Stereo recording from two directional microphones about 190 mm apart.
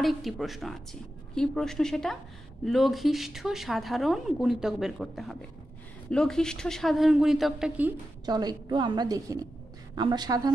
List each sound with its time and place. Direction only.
0.0 s a woman's voice: centre (ahead or behind)
8.3 s a woman's voice: 20° right (ahead or behind)